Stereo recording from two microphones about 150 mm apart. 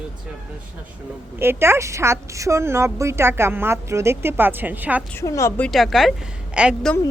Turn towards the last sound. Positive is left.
turn(degrees=-5)  # may be behind; listen again after turning